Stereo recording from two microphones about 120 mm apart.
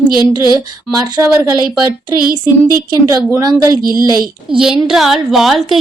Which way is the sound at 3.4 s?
30° right (ahead or behind).